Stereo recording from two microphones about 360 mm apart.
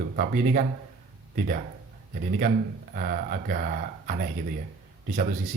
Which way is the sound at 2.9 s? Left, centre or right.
Right.